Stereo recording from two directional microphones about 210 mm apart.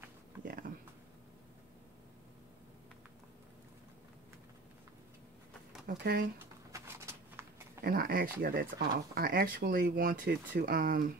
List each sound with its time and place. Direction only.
0.4 s a sound: 40° right (ahead or behind)
5.9 s speech: 45° right (ahead or behind)
6.7 s shuffling cards: 10° right (ahead or behind)
7.8 s speech: 45° right (ahead or behind)